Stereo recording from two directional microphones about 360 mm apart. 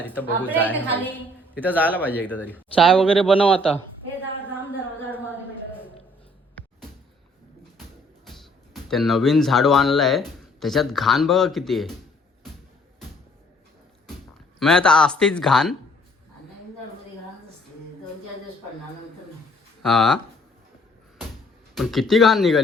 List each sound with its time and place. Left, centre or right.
0.0 s speech: centre
8.3 s speech: centre
14.6 s speech: centre
19.8 s speech: centre
21.8 s speech: centre